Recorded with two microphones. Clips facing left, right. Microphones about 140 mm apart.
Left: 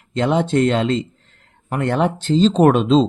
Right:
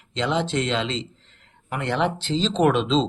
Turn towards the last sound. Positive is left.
turn(degrees=45)  # may be behind; listen again after turning